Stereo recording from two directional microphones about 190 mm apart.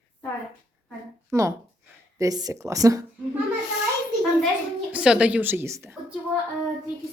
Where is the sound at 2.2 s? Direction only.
20° right (ahead or behind).